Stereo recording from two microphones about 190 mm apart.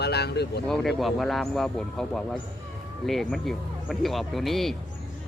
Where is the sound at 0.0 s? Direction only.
60° left (ahead or behind).